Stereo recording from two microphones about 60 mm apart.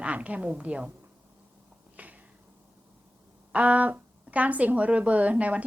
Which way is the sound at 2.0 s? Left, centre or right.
Right.